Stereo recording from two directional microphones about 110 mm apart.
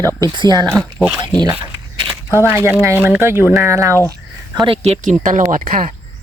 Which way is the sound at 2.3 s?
20° right (ahead or behind).